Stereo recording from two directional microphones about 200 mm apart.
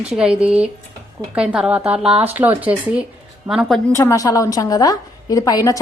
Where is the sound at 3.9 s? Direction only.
15° left (ahead or behind).